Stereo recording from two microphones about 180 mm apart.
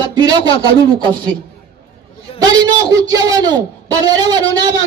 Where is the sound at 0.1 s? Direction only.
25° right (ahead or behind).